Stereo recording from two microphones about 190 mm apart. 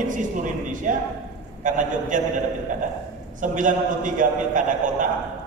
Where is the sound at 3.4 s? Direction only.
45° right (ahead or behind).